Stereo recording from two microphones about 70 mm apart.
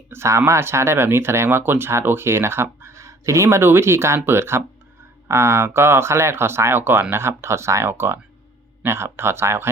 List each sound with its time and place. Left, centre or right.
0.1 s speech: right